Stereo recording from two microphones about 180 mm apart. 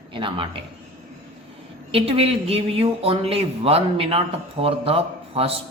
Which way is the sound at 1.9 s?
30° right (ahead or behind).